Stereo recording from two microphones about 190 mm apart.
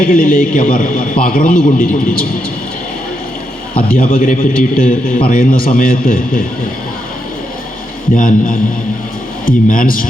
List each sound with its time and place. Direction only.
0.0 s a man's voice: 50° left (ahead or behind)
3.8 s a man's voice: 50° left (ahead or behind)
8.1 s a man's voice: 45° left (ahead or behind)